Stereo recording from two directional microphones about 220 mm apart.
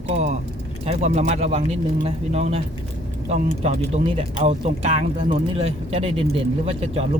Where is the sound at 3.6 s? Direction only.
30° right (ahead or behind).